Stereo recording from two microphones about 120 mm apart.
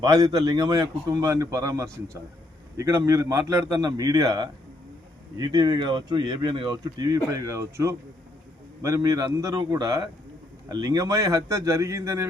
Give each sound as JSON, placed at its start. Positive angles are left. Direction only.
{"t": 0.0, "sound": "a man's voice", "side_deg": -30}